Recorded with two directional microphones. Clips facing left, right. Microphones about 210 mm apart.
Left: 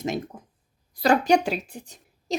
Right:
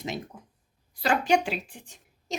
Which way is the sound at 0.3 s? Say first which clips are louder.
Left 4 dB; 45° left (ahead or behind).